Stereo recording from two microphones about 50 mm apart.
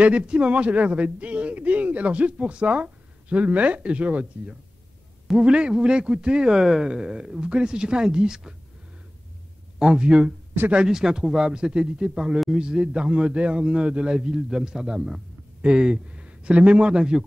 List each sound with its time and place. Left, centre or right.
0.0 s speech: right
9.8 s a man's voice: centre